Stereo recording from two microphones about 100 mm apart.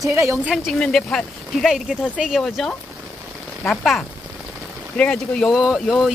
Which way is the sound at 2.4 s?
5° left (ahead or behind).